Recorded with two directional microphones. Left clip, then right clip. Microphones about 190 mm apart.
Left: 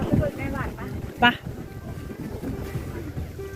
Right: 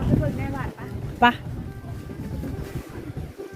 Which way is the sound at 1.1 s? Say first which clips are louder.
Right 1 dB; 35° right (ahead or behind).